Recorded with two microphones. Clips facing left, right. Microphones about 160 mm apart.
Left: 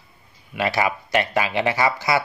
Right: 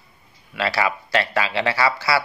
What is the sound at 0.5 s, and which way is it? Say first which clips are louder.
Speech: left 1 dB; 15° left (ahead or behind).